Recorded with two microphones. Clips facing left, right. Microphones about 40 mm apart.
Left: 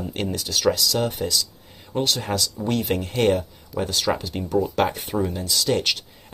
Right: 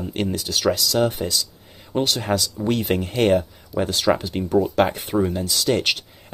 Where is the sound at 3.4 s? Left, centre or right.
Right.